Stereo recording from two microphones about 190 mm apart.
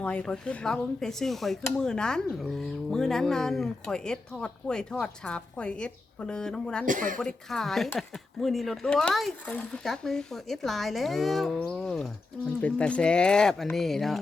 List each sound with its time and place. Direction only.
0.0 s speech: 5° left (ahead or behind)
6.8 s speech: 45° right (ahead or behind)
7.2 s speech: centre (ahead or behind)